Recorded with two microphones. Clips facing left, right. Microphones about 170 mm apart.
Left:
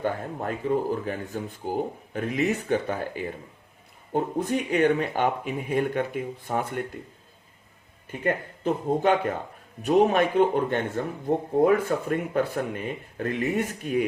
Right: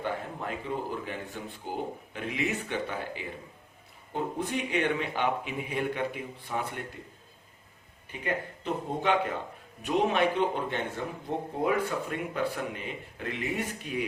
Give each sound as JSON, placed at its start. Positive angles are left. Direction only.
{"t": 0.0, "sound": "speech", "side_deg": 45}
{"t": 8.2, "sound": "speech", "side_deg": 45}